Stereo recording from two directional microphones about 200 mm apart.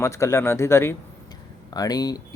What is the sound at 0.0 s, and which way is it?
A man's voice, 15° left (ahead or behind).